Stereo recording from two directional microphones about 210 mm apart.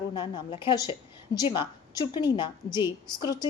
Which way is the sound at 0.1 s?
25° left (ahead or behind).